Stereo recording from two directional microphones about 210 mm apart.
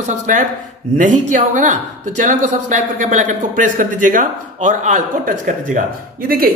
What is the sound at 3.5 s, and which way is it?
Speech, 40° right (ahead or behind).